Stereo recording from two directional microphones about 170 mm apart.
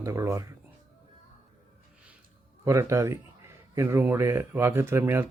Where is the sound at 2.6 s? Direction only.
15° right (ahead or behind).